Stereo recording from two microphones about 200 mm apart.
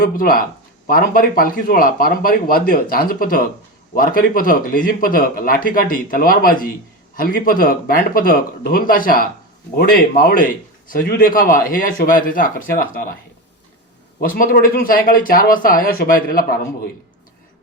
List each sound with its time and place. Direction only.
0.0 s a man's voice: 45° left (ahead or behind)
14.3 s a man's voice: 45° left (ahead or behind)